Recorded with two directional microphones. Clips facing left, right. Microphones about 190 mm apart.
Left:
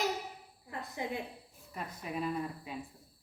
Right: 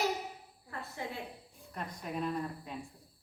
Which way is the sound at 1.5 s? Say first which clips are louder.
Even; 5° left (ahead or behind).